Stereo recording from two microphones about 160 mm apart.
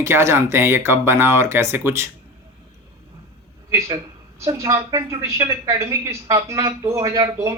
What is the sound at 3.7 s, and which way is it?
A woman's voice, 20° right (ahead or behind).